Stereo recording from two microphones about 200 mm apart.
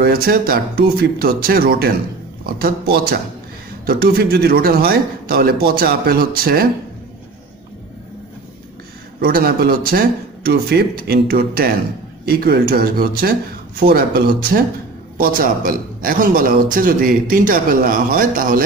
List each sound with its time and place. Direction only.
0.0 s a man's voice: 50° right (ahead or behind)
9.2 s a man's voice: 50° right (ahead or behind)